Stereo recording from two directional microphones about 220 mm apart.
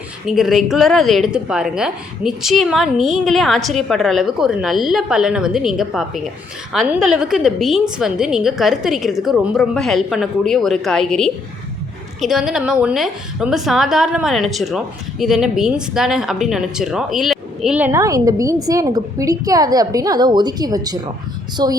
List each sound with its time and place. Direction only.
0.3 s a woman's voice: centre (ahead or behind); by 21.7 s 20° right (ahead or behind)